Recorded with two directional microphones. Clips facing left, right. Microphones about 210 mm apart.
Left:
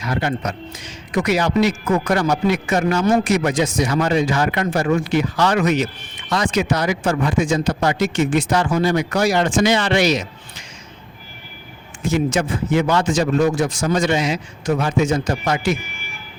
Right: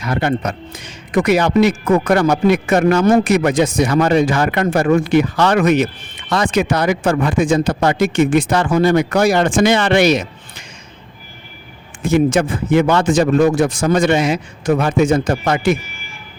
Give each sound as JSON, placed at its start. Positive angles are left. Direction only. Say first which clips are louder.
{"t": 0.0, "sound": "speech", "louder": "right 4 dB", "side_deg": -55}
{"t": 12.0, "sound": "speech", "louder": "right 5 dB", "side_deg": -55}